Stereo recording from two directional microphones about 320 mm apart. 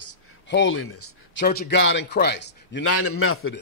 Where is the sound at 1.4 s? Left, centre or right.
Left.